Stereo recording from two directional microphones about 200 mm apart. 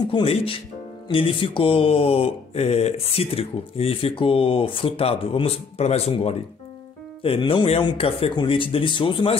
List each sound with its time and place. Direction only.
0.1 s mantra: 25° left (ahead or behind)